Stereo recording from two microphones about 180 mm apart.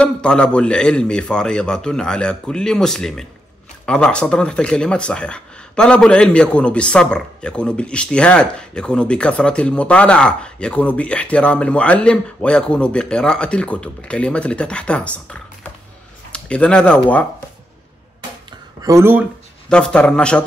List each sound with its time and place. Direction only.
0.0 s speech: 5° left (ahead or behind)
18.8 s speech: 15° right (ahead or behind)
19.7 s speech: 5° left (ahead or behind)